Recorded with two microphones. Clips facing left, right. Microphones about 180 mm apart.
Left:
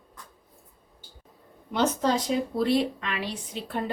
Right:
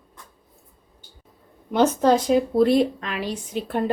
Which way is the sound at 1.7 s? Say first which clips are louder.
Right 7 dB; 50° right (ahead or behind).